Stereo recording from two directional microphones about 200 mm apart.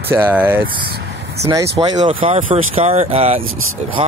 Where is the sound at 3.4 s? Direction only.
90° right.